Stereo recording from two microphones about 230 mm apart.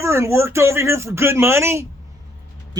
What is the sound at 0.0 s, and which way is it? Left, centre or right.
A man's voice, centre.